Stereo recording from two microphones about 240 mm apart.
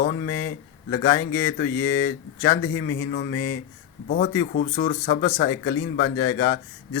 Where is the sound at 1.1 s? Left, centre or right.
Centre.